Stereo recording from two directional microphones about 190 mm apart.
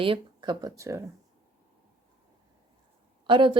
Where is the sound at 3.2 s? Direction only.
25° right (ahead or behind).